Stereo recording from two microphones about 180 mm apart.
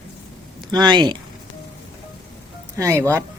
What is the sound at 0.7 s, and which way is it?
Speech, 25° right (ahead or behind).